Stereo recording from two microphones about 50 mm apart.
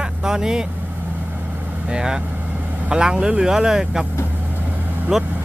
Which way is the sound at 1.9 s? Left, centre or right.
Centre.